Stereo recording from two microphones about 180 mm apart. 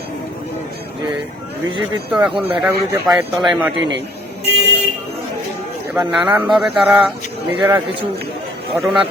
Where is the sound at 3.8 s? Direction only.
80° right.